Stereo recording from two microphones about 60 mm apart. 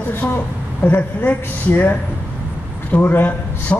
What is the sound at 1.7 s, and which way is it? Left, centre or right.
A man's voice, left.